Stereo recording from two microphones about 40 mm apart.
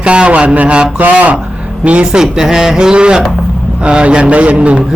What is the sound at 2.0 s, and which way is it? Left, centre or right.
A man's voice, centre.